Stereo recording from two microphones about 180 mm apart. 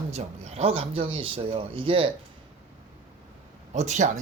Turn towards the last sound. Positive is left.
turn(degrees=-40)  # may be behind; listen again after turning